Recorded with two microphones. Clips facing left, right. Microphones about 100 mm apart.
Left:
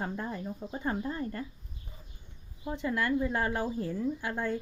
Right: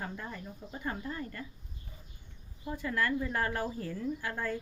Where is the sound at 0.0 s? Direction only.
30° left (ahead or behind).